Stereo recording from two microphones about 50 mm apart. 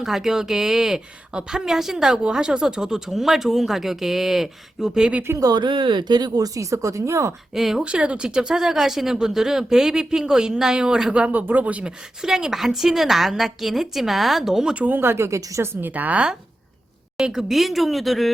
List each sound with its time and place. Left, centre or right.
0.0 s a woman's voice: centre
6.6 s speech: right
7.5 s a woman's voice: centre
7.9 s a woman's voice: right
11.3 s speech: right
12.2 s a woman's voice: centre
14.8 s speech: right
15.0 s a woman's voice: right
15.3 s a woman's voice: right
15.9 s speech: right
17.2 s a woman's voice: centre